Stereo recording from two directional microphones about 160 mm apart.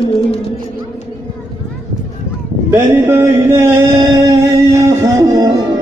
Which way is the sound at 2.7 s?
15° right (ahead or behind).